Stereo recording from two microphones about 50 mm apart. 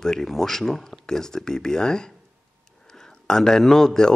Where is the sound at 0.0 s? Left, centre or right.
Centre.